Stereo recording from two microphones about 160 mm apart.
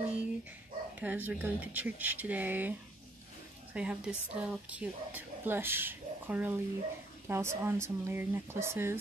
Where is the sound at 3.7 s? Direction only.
5° right (ahead or behind).